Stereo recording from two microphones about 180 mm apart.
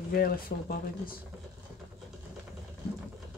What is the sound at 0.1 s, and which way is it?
Speech, 55° left (ahead or behind).